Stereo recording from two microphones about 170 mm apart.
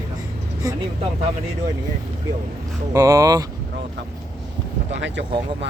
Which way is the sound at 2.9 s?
20° right (ahead or behind).